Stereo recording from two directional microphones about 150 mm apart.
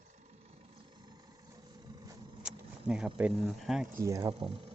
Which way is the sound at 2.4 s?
5° right (ahead or behind).